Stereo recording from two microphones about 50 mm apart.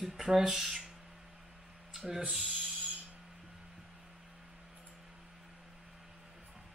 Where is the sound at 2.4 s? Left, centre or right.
Right.